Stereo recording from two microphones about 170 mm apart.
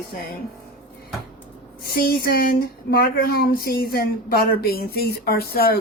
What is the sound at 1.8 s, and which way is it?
Speech, 65° left (ahead or behind).